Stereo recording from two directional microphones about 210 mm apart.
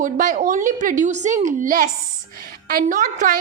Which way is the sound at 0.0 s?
40° right (ahead or behind).